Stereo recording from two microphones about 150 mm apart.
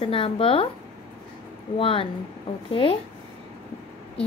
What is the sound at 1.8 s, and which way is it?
Speech, 35° left (ahead or behind).